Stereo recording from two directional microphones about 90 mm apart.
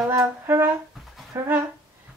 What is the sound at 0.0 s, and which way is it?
Speech, 45° right (ahead or behind).